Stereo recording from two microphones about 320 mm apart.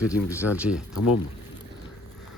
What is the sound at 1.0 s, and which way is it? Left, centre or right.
Speech, left.